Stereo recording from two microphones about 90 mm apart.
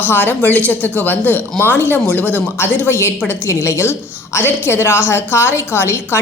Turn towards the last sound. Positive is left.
turn(degrees=25)  # may be behind; listen again after turning